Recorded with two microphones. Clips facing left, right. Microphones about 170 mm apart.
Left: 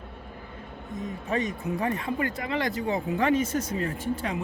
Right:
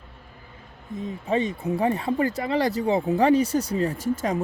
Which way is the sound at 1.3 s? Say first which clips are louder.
Right 5 dB; 30° right (ahead or behind).